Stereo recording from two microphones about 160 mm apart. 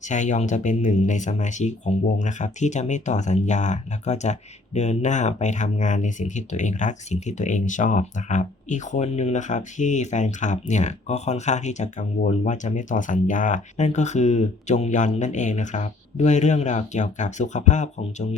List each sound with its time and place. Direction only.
0.0 s speech: 50° left (ahead or behind)